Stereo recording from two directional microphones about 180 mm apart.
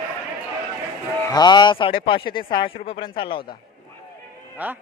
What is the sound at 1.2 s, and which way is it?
Speech, 20° left (ahead or behind).